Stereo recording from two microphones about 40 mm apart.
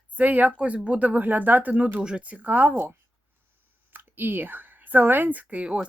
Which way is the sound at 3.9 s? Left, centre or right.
Right.